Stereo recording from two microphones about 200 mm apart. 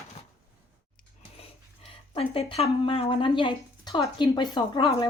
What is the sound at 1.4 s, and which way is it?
Speech, 30° left (ahead or behind).